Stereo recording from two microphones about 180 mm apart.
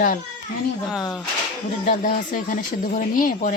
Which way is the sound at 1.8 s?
45° left (ahead or behind).